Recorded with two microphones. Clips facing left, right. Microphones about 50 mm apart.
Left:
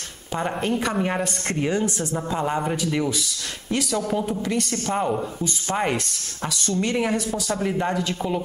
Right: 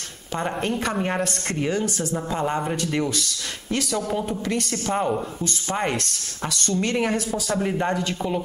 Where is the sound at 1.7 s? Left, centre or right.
Centre.